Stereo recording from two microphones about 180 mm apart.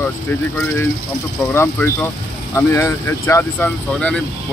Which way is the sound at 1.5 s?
10° left (ahead or behind).